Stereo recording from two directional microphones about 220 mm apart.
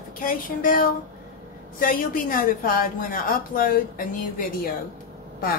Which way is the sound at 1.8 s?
40° left (ahead or behind).